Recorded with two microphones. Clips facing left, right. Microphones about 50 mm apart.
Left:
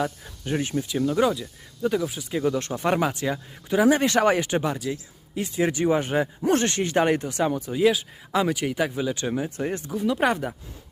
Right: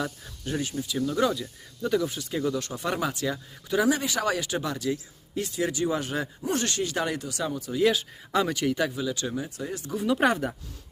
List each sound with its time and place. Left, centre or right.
0.8 s speech: left
1.8 s speech: centre
2.4 s speech: left
4.0 s speech: left
4.3 s speech: left
4.8 s a man's voice: centre
5.5 s speech: left
6.4 s speech: left
7.8 s speech: centre
8.6 s speech: centre
9.0 s speech: left
9.9 s speech: centre